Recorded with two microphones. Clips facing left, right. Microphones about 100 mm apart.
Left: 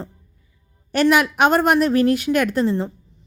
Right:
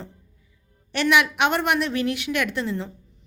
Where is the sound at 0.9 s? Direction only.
40° left (ahead or behind).